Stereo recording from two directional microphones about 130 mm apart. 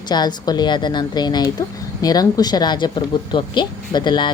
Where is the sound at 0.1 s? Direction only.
35° left (ahead or behind).